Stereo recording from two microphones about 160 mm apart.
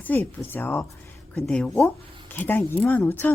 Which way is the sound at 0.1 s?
10° left (ahead or behind).